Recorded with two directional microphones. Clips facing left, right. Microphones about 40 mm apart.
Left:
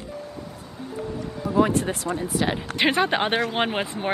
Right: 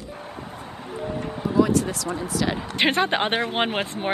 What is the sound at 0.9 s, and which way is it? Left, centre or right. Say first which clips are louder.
Music: right 2 dB; right.